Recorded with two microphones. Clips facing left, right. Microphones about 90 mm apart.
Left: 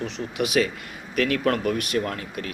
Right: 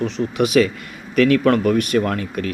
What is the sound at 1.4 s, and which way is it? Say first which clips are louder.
Speech: right 7 dB; 50° right (ahead or behind).